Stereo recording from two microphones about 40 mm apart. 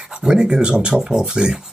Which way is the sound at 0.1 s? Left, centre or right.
Centre.